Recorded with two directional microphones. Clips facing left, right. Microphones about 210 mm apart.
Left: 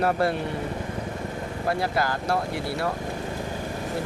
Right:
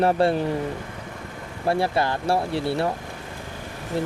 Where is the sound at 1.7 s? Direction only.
25° right (ahead or behind).